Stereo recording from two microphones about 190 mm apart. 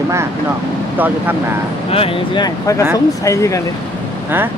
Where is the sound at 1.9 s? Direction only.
30° left (ahead or behind).